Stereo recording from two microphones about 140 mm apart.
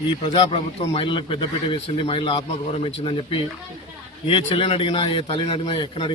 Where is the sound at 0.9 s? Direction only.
35° left (ahead or behind).